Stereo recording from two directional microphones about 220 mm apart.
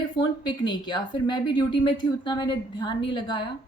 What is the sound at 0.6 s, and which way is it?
Speech, 20° left (ahead or behind).